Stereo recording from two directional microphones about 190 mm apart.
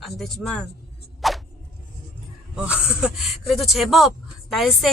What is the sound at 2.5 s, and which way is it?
Speech, 5° right (ahead or behind).